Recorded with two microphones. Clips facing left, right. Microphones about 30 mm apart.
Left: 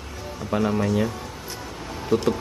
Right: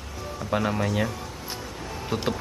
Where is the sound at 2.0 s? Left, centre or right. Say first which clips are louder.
Left 6 dB; centre.